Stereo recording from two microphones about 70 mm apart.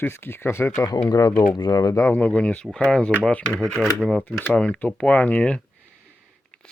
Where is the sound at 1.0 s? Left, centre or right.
Left.